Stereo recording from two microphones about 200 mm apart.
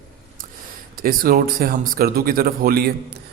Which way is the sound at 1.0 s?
45° right (ahead or behind).